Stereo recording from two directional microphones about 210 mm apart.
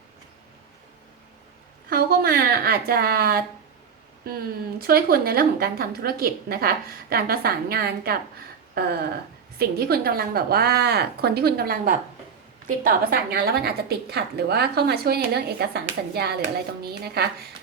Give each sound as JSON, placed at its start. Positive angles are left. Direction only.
{"t": 1.9, "sound": "a woman's voice", "side_deg": -45}
{"t": 9.6, "sound": "a woman's voice", "side_deg": -50}